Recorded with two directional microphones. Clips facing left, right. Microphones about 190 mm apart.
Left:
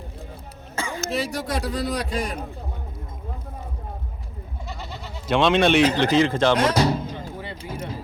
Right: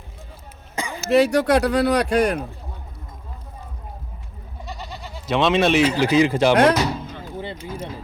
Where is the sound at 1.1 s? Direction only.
70° right (ahead or behind).